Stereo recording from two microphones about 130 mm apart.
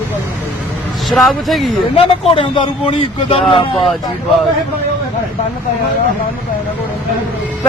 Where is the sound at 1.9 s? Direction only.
50° left (ahead or behind).